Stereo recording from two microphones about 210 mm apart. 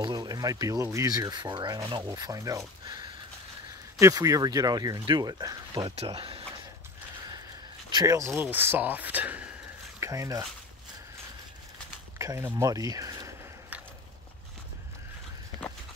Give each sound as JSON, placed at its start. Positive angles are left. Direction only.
{"t": 0.0, "sound": "speech", "side_deg": -20}
{"t": 7.9, "sound": "speech", "side_deg": -15}
{"t": 12.2, "sound": "speech", "side_deg": -10}